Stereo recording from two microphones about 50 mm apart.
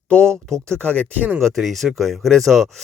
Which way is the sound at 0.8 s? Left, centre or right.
Left.